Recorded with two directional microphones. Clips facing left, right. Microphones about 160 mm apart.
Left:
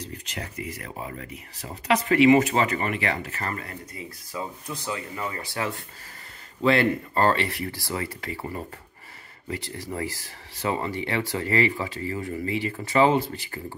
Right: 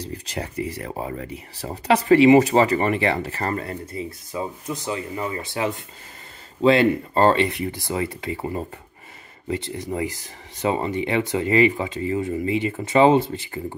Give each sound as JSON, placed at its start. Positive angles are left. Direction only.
{"t": 0.0, "sound": "speech", "side_deg": -35}